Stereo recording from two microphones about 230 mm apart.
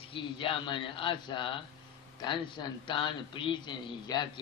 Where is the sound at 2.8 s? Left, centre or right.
Left.